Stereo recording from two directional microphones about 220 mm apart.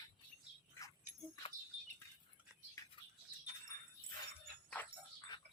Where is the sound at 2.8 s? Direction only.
15° left (ahead or behind).